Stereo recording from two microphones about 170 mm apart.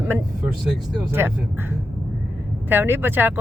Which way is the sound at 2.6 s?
10° right (ahead or behind).